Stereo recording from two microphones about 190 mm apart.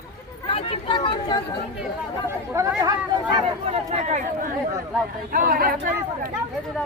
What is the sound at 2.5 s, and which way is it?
Speech, 15° right (ahead or behind).